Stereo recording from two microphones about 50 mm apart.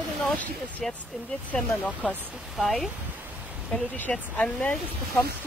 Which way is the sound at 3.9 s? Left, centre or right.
Left.